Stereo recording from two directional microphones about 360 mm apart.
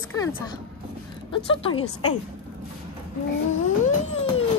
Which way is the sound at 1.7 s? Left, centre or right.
Left.